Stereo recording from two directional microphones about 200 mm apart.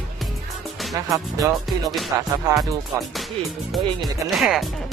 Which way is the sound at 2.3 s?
15° right (ahead or behind).